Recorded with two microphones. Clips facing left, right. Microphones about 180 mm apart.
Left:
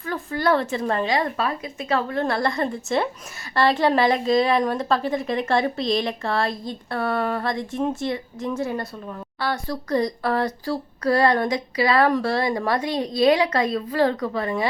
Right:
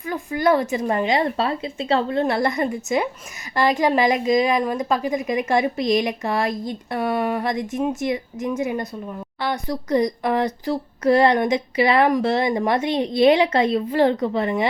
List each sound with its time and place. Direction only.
0.0 s a woman's voice: 15° right (ahead or behind)